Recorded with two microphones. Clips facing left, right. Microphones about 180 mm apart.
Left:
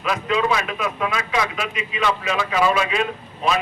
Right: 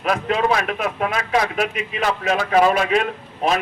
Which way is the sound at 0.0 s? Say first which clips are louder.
Right 2 dB; 50° right (ahead or behind).